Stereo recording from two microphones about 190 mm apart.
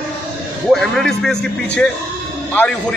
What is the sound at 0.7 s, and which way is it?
A man's voice, centre (ahead or behind).